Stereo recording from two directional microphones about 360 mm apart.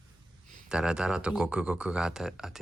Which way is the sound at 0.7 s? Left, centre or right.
Centre.